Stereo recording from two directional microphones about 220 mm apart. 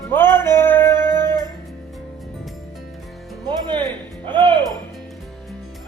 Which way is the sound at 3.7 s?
5° left (ahead or behind).